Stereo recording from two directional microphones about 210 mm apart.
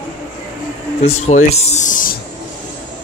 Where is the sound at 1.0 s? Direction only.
30° left (ahead or behind).